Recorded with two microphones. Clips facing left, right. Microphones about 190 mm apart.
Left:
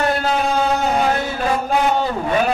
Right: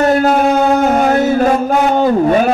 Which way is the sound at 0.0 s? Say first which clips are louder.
Right 8 dB; 50° right (ahead or behind).